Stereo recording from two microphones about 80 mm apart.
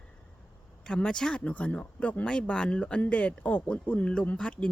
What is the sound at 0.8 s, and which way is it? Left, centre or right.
Speech, centre.